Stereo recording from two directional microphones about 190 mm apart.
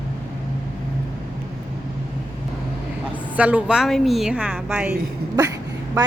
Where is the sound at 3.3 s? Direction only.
5° right (ahead or behind).